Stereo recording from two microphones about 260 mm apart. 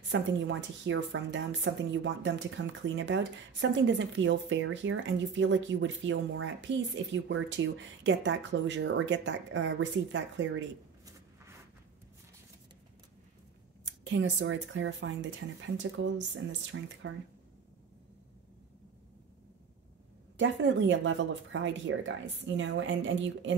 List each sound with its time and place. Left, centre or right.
0.1 s a woman's voice: right
14.0 s a woman's voice: right
20.3 s a woman's voice: right